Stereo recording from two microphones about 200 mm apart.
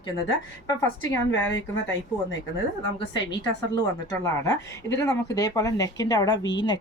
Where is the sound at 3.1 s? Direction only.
65° left (ahead or behind).